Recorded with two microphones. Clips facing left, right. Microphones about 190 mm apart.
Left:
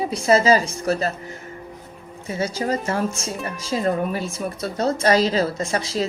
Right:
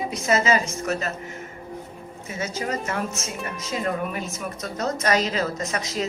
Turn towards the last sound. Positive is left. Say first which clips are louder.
# left 4 dB
turn(degrees=30)  # may be behind; listen again after turning